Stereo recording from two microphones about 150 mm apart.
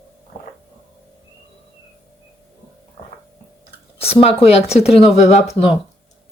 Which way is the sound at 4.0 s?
40° left (ahead or behind).